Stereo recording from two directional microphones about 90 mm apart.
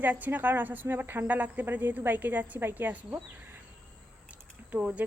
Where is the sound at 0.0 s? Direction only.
20° right (ahead or behind).